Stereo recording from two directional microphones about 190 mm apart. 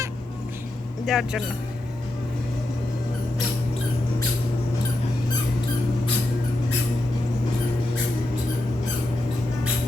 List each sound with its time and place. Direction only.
1.0 s speech: 5° right (ahead or behind)